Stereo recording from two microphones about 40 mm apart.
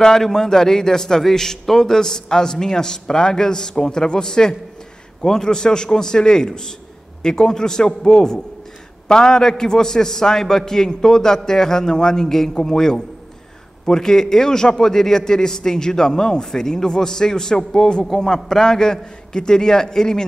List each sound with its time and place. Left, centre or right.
0.0 s a man's voice: centre